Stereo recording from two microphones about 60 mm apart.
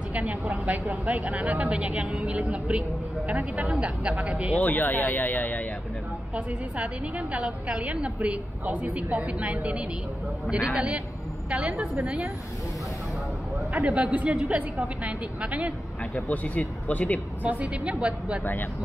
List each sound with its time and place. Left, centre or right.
0.1 s a woman's voice: right
3.3 s a woman's voice: right
4.6 s speech: left
6.3 s a woman's voice: centre
13.7 s a woman's voice: centre
16.3 s speech: left
17.4 s a woman's voice: right
18.4 s speech: left